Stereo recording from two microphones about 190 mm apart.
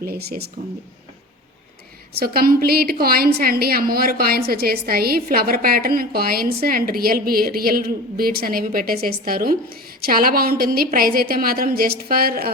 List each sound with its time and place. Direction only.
0.0 s speech: 55° right (ahead or behind)
2.1 s a woman's voice: 55° right (ahead or behind)